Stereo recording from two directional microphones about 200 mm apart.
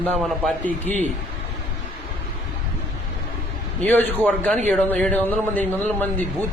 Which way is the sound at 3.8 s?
10° left (ahead or behind).